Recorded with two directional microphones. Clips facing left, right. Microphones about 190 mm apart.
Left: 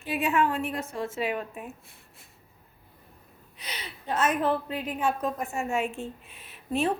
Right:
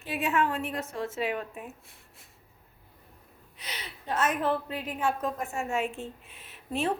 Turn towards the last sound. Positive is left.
turn(degrees=15)  # may be behind; listen again after turning